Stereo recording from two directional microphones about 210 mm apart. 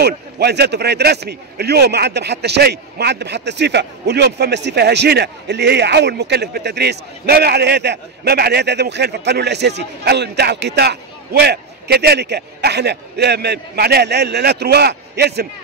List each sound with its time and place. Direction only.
0.0 s speech: 50° right (ahead or behind)